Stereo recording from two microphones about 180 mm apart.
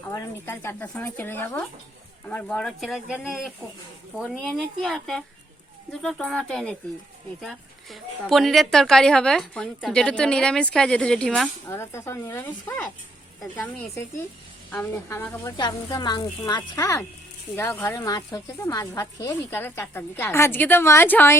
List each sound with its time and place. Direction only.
0.1 s a woman's voice: 15° left (ahead or behind)
15.5 s speech: 25° left (ahead or behind)